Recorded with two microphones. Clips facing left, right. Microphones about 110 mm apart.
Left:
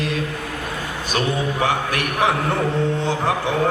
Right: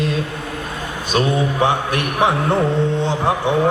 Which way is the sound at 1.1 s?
20° right (ahead or behind).